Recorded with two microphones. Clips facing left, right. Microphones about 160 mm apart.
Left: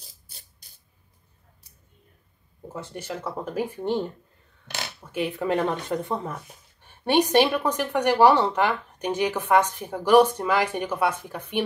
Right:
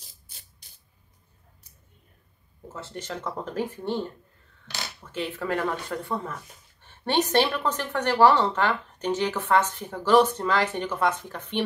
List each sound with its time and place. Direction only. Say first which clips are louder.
2.7 s speech: left 2 dB; 15° left (ahead or behind)
5.0 s speech: left 4 dB; 10° left (ahead or behind)